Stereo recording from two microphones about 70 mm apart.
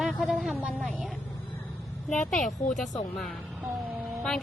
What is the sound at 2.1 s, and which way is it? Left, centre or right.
A woman's voice, centre.